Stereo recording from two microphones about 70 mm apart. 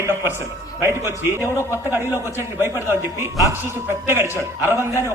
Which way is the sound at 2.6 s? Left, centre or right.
Right.